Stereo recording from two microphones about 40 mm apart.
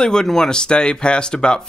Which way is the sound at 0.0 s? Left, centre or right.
Centre.